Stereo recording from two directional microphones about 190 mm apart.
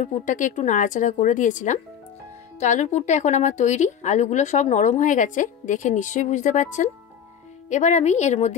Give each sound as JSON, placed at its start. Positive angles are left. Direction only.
{"t": 0.0, "sound": "a woman's voice", "side_deg": 40}